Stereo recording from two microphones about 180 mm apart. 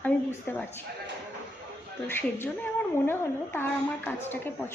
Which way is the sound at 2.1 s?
10° left (ahead or behind).